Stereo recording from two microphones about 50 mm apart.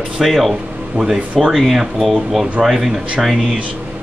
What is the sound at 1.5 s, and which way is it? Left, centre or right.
Speech, centre.